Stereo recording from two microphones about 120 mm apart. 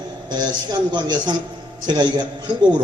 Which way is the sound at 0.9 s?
40° right (ahead or behind).